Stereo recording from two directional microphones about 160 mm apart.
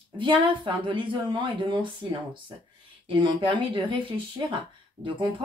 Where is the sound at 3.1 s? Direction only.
30° right (ahead or behind).